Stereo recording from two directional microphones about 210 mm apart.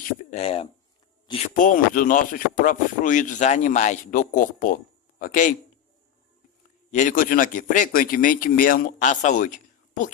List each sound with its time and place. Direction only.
0.3 s a sound: 30° left (ahead or behind)
1.3 s speech: 35° left (ahead or behind)
6.9 s speech: 40° left (ahead or behind)